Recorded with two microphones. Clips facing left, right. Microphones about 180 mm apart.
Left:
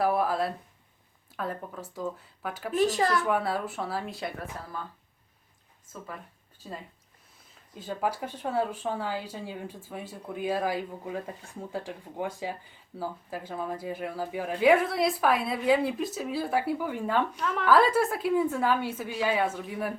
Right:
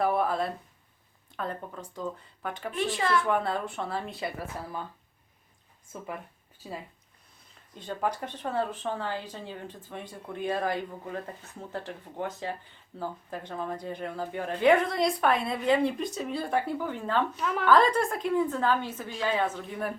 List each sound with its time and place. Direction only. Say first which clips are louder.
0.0 s speech: left 1 dB; 5° left (ahead or behind)
2.7 s speech: left 3 dB; 40° left (ahead or behind)
3.2 s speech: even; 5° left (ahead or behind)
6.6 s speech: right 1 dB; 5° right (ahead or behind)
7.8 s speech: left 1 dB; 5° left (ahead or behind)
17.3 s speech: even; 5° right (ahead or behind)